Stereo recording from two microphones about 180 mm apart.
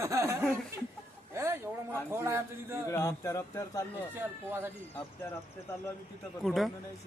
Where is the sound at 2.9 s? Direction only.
15° left (ahead or behind).